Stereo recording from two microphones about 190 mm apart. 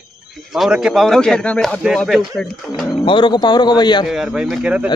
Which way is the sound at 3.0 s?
25° left (ahead or behind).